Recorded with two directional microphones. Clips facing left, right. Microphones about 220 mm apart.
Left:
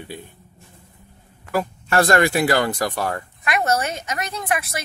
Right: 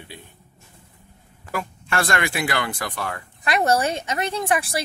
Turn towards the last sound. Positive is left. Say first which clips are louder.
# right 2 dB
turn(degrees=-30)  # may be behind; listen again after turning